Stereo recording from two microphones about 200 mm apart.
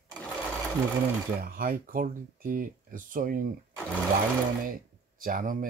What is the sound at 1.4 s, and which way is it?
Speech, 45° right (ahead or behind).